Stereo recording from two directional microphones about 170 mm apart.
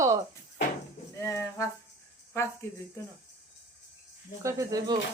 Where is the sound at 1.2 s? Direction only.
15° left (ahead or behind).